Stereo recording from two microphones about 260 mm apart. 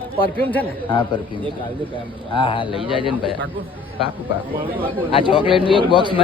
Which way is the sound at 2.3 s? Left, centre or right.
Centre.